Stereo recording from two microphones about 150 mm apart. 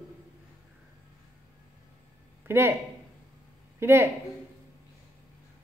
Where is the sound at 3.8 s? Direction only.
15° right (ahead or behind).